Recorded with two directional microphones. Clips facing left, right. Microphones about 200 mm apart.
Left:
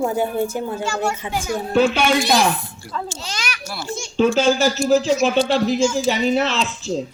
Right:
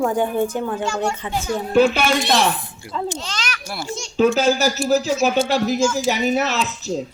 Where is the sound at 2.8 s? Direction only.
20° right (ahead or behind).